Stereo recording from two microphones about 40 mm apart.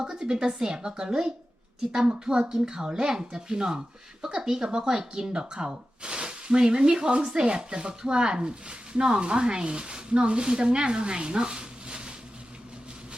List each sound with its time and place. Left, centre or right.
0.1 s speech: right